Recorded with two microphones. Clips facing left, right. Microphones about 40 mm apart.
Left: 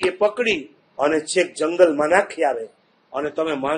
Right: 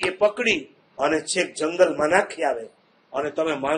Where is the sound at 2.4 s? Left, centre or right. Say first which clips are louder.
Left 3 dB; left.